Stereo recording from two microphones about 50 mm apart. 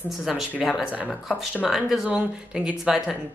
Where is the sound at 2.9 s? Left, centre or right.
Centre.